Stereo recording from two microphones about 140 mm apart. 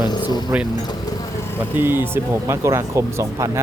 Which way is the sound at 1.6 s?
15° right (ahead or behind).